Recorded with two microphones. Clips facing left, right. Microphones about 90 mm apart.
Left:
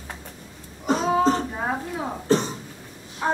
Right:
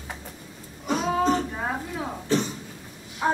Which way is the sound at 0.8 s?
35° left (ahead or behind).